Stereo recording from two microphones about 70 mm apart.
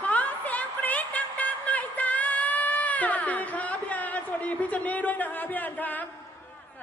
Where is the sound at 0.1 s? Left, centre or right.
Left.